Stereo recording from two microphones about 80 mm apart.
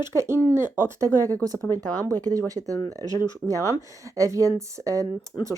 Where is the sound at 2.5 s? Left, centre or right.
Right.